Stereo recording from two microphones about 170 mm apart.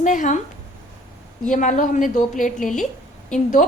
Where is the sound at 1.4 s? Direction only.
50° left (ahead or behind).